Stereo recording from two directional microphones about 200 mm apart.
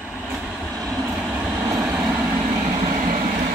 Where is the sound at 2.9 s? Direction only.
40° right (ahead or behind).